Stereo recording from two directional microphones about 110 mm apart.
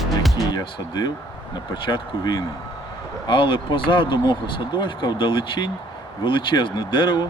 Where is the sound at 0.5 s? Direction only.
40° left (ahead or behind).